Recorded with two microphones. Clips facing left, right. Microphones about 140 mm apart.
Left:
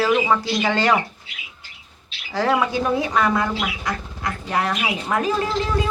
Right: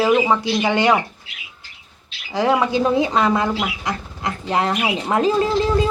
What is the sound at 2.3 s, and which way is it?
Speech, 20° right (ahead or behind).